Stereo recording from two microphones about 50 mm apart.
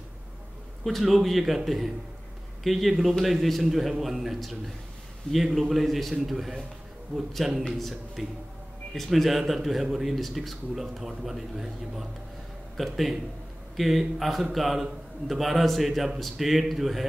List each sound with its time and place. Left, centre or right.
0.8 s a man's voice: centre